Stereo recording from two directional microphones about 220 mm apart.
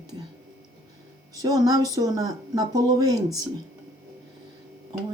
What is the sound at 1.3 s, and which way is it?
Speech, 15° right (ahead or behind).